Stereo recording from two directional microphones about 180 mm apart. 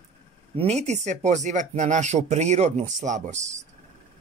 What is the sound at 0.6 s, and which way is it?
Speech, 40° right (ahead or behind).